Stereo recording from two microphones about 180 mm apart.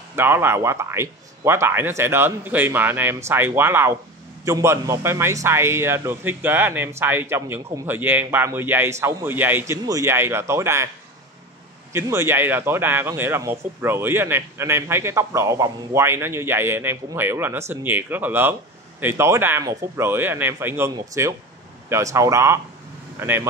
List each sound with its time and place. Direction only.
0.1 s a man's voice: 10° right (ahead or behind)
11.9 s a man's voice: 15° right (ahead or behind)